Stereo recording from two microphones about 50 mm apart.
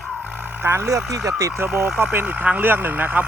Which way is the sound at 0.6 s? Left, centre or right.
Right.